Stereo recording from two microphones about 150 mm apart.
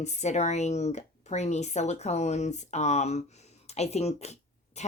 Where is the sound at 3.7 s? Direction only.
45° left (ahead or behind).